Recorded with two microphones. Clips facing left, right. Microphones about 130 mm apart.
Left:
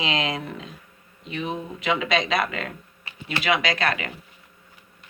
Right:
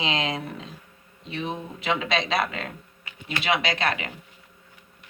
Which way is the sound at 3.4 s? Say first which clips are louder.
Left 2 dB; 30° right (ahead or behind).